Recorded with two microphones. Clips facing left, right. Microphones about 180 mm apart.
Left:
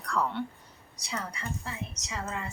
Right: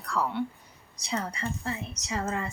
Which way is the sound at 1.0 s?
25° right (ahead or behind).